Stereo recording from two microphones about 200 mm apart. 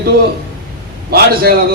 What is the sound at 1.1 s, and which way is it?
Speech, 50° right (ahead or behind).